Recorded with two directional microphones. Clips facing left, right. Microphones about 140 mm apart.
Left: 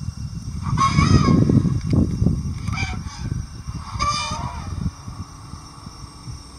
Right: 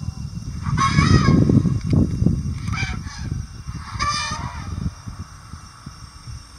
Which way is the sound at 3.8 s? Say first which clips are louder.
Left 1 dB; 15° left (ahead or behind).